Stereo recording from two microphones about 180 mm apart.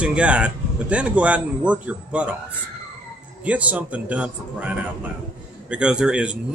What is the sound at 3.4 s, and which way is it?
Speech, 10° right (ahead or behind).